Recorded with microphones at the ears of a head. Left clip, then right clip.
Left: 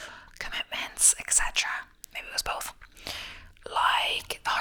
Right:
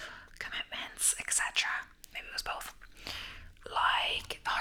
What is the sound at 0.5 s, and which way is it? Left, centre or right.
Whispering, left.